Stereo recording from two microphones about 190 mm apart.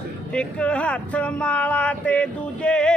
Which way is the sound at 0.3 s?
5° left (ahead or behind).